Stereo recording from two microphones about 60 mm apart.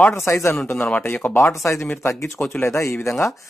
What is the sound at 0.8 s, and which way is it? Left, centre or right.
Speech, left.